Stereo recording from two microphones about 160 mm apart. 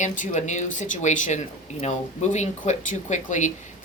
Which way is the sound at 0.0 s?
50° left (ahead or behind).